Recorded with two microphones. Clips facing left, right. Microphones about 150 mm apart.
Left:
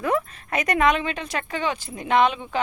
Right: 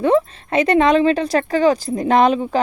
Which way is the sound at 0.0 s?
30° right (ahead or behind).